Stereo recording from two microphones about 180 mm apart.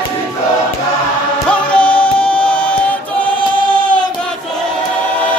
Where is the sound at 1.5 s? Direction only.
5° left (ahead or behind).